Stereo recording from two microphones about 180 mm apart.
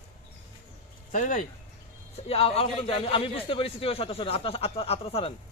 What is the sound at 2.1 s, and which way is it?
A man's voice, 35° left (ahead or behind).